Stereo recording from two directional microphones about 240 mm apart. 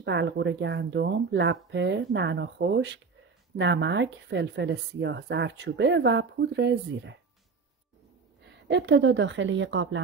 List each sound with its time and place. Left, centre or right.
0.0 s speech: right
8.6 s speech: right